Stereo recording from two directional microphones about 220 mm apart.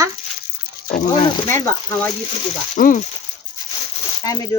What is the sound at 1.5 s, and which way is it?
Speech, 10° left (ahead or behind).